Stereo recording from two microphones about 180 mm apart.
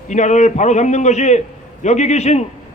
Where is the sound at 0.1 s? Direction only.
40° left (ahead or behind).